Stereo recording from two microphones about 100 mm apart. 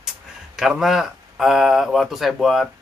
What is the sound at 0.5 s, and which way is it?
Speech, 5° right (ahead or behind).